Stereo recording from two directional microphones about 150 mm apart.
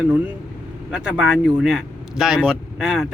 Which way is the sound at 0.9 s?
5° right (ahead or behind).